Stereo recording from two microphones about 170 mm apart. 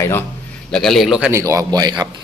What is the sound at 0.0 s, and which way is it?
Speech, 15° left (ahead or behind).